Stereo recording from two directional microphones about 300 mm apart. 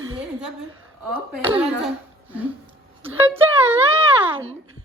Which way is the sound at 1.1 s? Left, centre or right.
Centre.